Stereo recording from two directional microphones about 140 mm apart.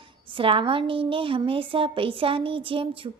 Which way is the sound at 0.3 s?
40° right (ahead or behind).